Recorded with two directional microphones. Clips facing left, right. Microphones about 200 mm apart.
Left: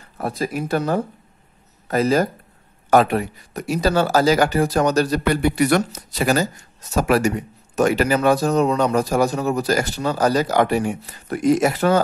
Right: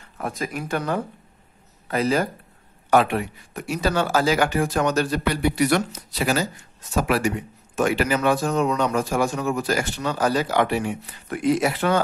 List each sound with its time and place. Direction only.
0.2 s speech: 35° left (ahead or behind)